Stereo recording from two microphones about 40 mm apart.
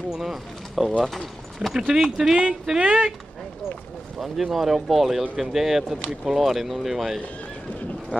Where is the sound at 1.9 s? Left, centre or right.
Centre.